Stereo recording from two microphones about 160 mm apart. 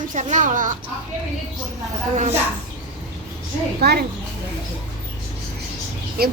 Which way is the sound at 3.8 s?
90° right.